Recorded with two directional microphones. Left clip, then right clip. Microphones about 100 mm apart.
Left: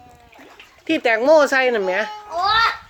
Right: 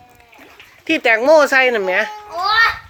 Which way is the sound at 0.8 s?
Centre (ahead or behind).